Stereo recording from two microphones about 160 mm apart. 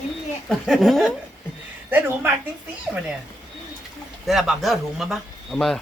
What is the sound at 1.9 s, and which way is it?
Speech, 15° right (ahead or behind).